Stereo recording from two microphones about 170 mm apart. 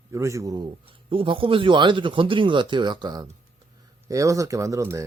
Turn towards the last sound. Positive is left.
turn(degrees=-15)  # may be behind; listen again after turning